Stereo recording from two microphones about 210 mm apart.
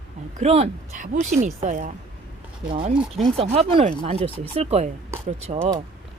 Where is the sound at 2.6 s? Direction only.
25° right (ahead or behind).